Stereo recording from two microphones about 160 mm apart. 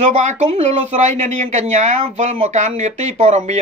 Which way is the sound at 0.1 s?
45° right (ahead or behind).